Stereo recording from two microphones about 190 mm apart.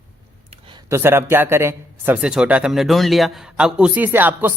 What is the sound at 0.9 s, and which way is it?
A man's voice, 10° right (ahead or behind).